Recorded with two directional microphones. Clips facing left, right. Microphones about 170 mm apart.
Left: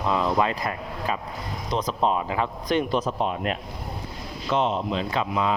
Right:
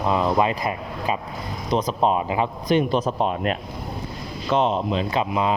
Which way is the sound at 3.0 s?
40° right (ahead or behind).